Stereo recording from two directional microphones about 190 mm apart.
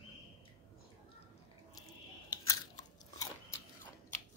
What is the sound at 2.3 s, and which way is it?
Biting, 20° left (ahead or behind).